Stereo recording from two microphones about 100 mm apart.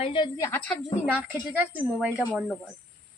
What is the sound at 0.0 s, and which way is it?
Speech, 60° left (ahead or behind).